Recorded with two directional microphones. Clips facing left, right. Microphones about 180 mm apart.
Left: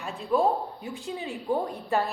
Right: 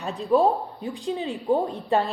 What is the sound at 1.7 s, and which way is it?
Speech, 30° right (ahead or behind).